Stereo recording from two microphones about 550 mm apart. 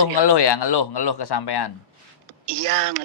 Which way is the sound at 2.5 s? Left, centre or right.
Right.